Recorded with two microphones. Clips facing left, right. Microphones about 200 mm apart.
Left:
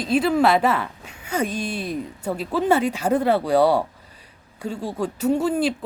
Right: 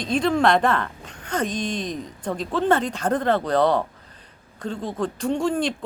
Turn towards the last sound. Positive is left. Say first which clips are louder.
# left 2 dB
turn(degrees=5)  # may be behind; listen again after turning